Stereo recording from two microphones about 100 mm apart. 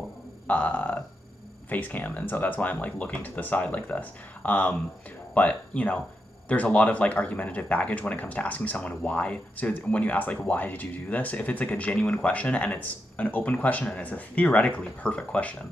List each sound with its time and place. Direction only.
0.5 s speech: 15° left (ahead or behind)